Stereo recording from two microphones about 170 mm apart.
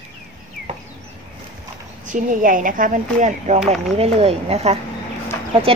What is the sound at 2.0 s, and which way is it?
Speech, 50° right (ahead or behind).